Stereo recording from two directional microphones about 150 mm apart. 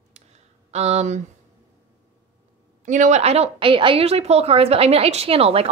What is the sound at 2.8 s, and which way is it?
A woman's voice, 55° right (ahead or behind).